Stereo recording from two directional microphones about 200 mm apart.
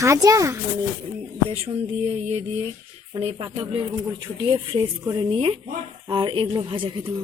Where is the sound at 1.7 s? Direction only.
30° right (ahead or behind).